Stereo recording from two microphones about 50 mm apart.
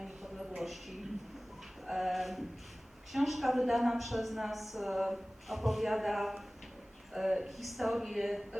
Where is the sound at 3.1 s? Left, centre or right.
Centre.